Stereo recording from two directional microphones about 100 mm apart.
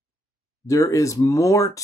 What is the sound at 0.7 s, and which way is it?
Speech, 35° left (ahead or behind).